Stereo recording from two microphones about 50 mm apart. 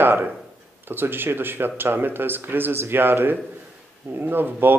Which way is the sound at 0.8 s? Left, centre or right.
Right.